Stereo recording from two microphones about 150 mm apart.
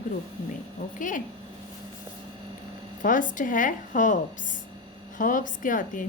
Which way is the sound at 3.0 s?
60° left (ahead or behind).